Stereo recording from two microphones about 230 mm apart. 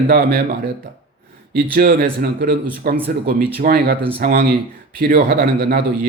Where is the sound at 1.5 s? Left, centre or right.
Right.